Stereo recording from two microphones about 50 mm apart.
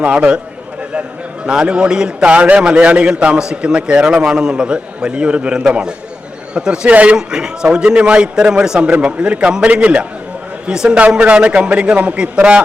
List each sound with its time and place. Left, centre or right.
0.0 s a man's voice: right
1.5 s a man's voice: centre
2.3 s a man's voice: right
7.2 s a man's voice: centre